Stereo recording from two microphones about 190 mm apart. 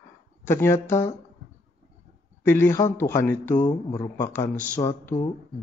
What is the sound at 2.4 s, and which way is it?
Speech, 15° left (ahead or behind).